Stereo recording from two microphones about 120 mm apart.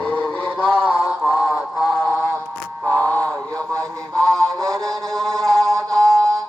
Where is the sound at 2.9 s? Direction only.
10° left (ahead or behind).